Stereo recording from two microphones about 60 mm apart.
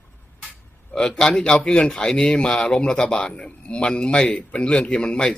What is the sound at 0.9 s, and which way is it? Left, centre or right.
A man's voice, centre.